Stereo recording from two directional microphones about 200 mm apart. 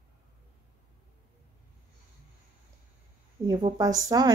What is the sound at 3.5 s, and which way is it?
Speech, 20° right (ahead or behind).